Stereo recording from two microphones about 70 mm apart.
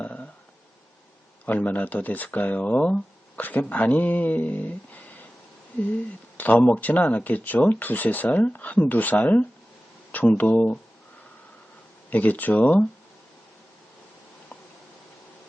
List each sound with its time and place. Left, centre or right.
0.0 s burping: left
1.5 s speech: left
6.3 s speech: left
12.1 s speech: left